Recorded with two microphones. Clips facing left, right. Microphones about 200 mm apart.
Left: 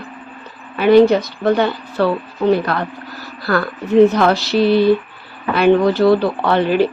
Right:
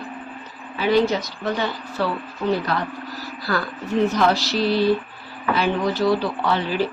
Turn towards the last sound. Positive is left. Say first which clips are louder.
# left 7 dB
turn(degrees=60)  # may be behind; listen again after turning